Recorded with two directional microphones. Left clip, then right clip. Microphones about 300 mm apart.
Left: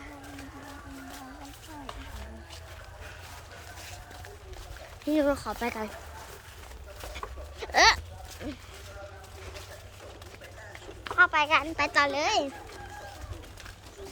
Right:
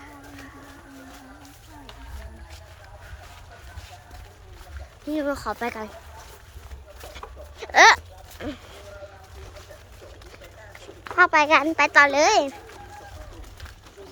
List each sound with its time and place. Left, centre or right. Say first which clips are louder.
5.0 s speech: even; centre
7.1 s a sound: even; centre
11.2 s speech: right 6 dB; centre
11.8 s a child's voice: right 9 dB; centre